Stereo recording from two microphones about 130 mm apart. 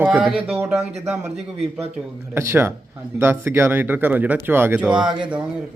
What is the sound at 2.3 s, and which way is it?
Speech, 20° right (ahead or behind).